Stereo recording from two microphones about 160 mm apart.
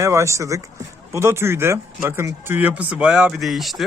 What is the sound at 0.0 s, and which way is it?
Speech, 15° right (ahead or behind).